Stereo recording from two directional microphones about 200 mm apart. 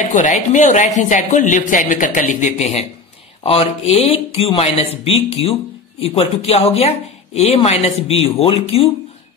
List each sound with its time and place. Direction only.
0.0 s speech: 40° left (ahead or behind)